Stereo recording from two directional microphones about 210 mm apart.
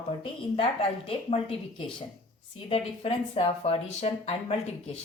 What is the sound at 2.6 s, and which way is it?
Speech, 30° left (ahead or behind).